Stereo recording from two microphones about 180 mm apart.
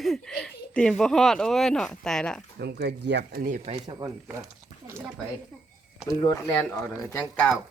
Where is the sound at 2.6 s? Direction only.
65° right (ahead or behind).